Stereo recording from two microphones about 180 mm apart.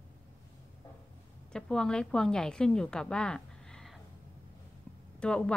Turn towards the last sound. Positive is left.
turn(degrees=5)  # may be behind; listen again after turning